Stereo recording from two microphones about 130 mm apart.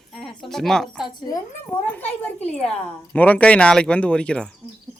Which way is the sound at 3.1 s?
10° left (ahead or behind).